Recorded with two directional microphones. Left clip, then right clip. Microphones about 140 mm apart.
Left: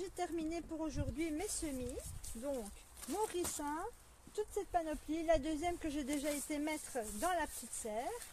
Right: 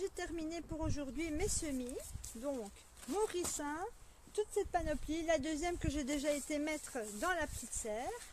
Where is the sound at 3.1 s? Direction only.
50° right (ahead or behind).